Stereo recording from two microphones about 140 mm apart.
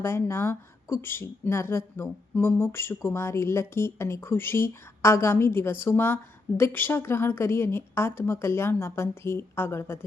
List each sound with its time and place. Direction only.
0.0 s speech: 20° left (ahead or behind)